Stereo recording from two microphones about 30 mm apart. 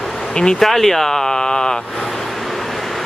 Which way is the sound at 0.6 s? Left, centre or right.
Centre.